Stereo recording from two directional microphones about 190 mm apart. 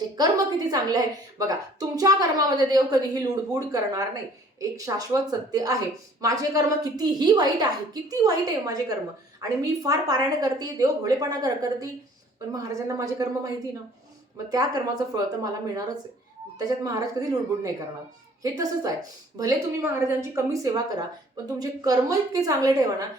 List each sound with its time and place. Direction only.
0.2 s a woman's voice: 20° right (ahead or behind)
14.5 s a woman's voice: 20° right (ahead or behind)